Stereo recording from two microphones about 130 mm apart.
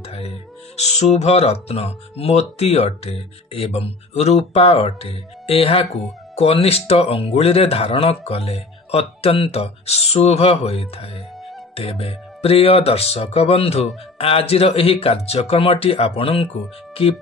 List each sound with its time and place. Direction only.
0.0 s music: 55° left (ahead or behind)
0.7 s speech: 60° left (ahead or behind)
5.9 s speech: centre (ahead or behind)
6.3 s speech: 50° left (ahead or behind)